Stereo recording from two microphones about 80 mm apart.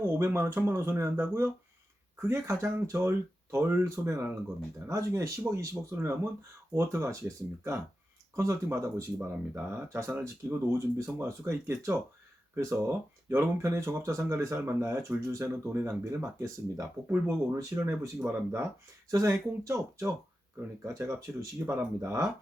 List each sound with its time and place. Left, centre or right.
0.0 s speech: right
10.2 s speech: right
19.1 s speech: right